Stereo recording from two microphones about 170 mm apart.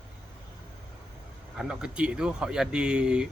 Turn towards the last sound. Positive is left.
turn(degrees=-5)  # may be behind; listen again after turning